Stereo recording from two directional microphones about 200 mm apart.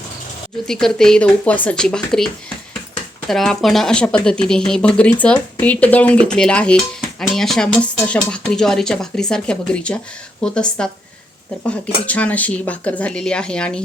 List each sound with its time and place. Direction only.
0.7 s speech: centre (ahead or behind)